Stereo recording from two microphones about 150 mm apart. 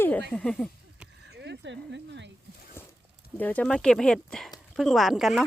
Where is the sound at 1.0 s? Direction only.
5° right (ahead or behind).